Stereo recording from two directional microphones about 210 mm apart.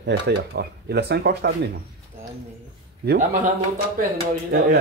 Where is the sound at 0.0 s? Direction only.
50° right (ahead or behind).